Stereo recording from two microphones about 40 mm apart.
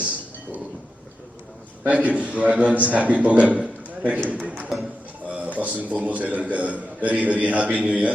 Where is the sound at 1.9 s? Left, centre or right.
Right.